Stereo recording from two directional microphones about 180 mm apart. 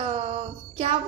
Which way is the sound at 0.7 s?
30° right (ahead or behind).